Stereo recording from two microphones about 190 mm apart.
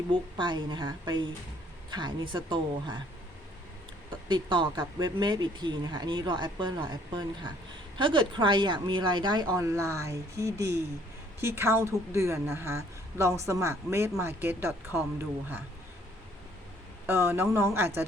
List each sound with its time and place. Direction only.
0.1 s speech: 25° right (ahead or behind)
4.3 s a woman's voice: 25° right (ahead or behind)
17.1 s a woman's voice: 10° right (ahead or behind)